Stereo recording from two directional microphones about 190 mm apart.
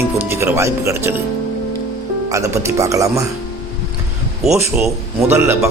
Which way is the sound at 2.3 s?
15° right (ahead or behind).